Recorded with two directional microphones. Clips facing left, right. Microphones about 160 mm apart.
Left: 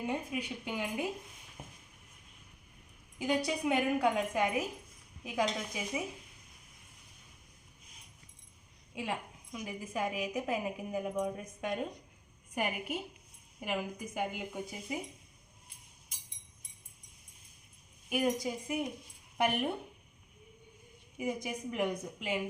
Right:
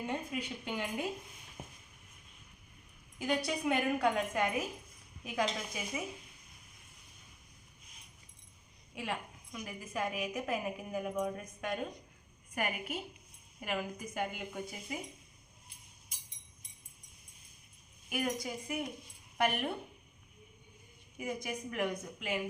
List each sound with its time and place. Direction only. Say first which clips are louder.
0.0 s a woman's voice: left 2 dB; 10° left (ahead or behind)
3.2 s a woman's voice: left 2 dB; 15° left (ahead or behind)
9.0 s a woman's voice: left 2 dB; 15° left (ahead or behind)
18.1 s a woman's voice: left 4 dB; 20° left (ahead or behind)
21.2 s a woman's voice: left 2 dB; 15° left (ahead or behind)